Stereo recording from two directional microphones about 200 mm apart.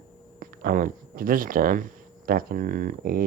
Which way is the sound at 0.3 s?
45° right (ahead or behind).